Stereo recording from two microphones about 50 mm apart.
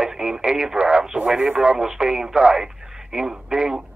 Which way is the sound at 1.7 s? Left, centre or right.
Centre.